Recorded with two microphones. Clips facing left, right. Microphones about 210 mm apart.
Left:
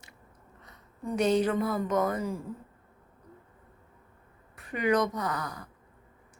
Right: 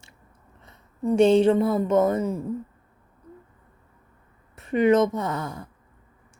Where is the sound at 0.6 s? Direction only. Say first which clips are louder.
Right 10 dB; 25° right (ahead or behind).